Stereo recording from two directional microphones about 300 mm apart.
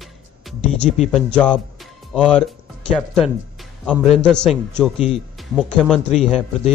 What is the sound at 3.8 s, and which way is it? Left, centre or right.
A man's voice, centre.